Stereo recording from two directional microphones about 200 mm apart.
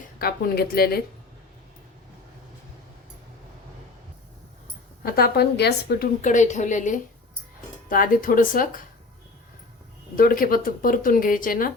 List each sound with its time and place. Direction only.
0.2 s speech: 50° left (ahead or behind)
5.0 s speech: 50° left (ahead or behind)
6.2 s a woman's voice: 35° left (ahead or behind)
10.2 s speech: 45° left (ahead or behind)